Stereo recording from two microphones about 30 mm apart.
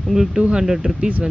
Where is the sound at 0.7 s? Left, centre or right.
Centre.